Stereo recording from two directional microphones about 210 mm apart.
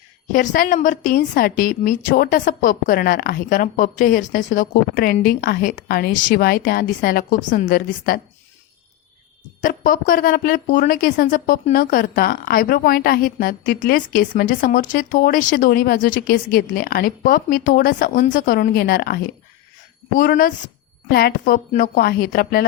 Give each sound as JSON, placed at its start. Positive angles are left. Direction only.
{"t": 0.3, "sound": "a woman's voice", "side_deg": 40}
{"t": 9.6, "sound": "a woman's voice", "side_deg": 40}